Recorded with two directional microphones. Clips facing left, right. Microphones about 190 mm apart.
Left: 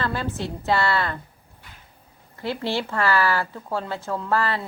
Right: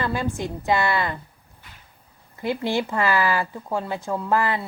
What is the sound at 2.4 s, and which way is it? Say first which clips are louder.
Speech: right 2 dB; 15° right (ahead or behind).